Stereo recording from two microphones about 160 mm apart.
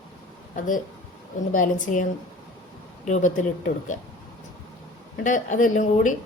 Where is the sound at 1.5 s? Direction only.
55° left (ahead or behind).